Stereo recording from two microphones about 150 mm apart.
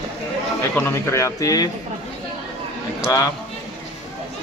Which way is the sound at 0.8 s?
20° left (ahead or behind).